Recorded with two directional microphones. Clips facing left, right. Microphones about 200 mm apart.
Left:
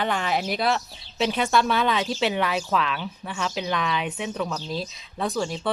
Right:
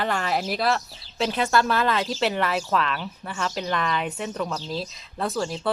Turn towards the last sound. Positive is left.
turn(degrees=0)  # may be behind; listen again after turning